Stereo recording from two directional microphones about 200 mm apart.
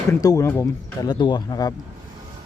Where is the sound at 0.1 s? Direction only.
15° left (ahead or behind).